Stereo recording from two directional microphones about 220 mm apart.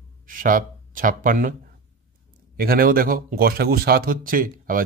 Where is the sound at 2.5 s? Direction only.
40° right (ahead or behind).